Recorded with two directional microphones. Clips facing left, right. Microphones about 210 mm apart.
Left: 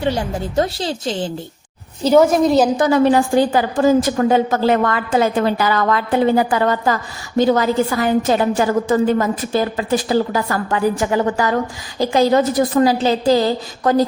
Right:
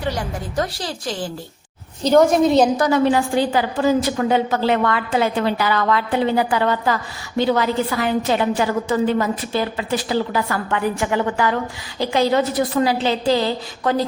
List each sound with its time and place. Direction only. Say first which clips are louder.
0.0 s a woman's voice: left 5 dB; 25° left (ahead or behind)
2.0 s a woman's voice: left 1 dB; 5° left (ahead or behind)
2.9 s a woman's voice: left 3 dB; 45° left (ahead or behind)